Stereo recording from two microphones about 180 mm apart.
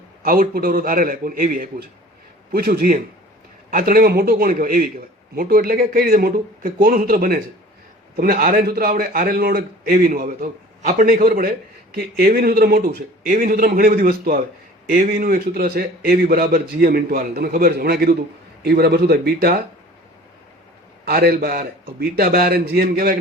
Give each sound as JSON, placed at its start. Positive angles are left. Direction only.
{"t": 0.2, "sound": "a man's voice", "side_deg": -55}
{"t": 21.0, "sound": "a man's voice", "side_deg": -60}